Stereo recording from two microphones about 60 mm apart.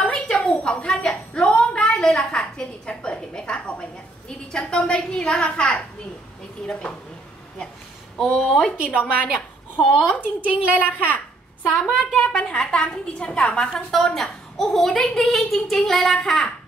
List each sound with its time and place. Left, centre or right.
0.0 s a sound: centre
8.4 s a woman's voice: centre
9.8 s speech: centre
10.2 s a woman's voice: right
10.8 s a woman's voice: left; by 16.4 s centre